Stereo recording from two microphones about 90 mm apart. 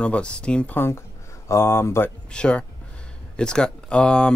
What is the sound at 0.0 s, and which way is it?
Speech, 10° left (ahead or behind).